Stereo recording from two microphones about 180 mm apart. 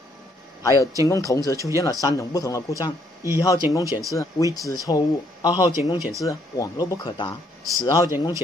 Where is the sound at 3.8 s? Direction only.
15° right (ahead or behind).